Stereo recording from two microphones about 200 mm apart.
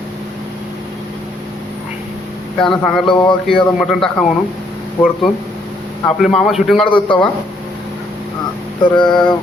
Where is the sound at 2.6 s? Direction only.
5° left (ahead or behind).